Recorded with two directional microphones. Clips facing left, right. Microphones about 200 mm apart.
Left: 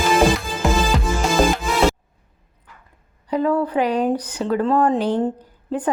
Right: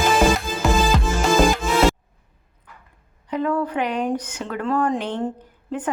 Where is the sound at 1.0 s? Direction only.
Centre (ahead or behind).